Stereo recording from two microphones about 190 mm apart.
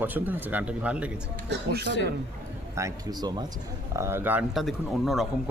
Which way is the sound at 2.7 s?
20° right (ahead or behind).